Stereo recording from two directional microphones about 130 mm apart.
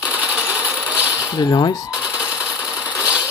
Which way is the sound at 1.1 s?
30° left (ahead or behind).